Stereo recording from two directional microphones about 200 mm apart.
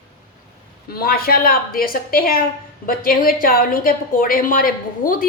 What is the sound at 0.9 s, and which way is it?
A woman's voice, 50° left (ahead or behind).